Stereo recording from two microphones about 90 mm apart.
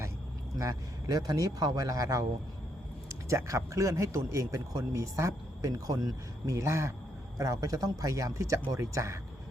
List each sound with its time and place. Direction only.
0.6 s speech: 40° right (ahead or behind)
3.2 s speech: 35° right (ahead or behind)